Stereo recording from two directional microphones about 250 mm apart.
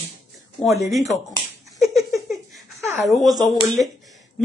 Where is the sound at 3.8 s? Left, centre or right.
Centre.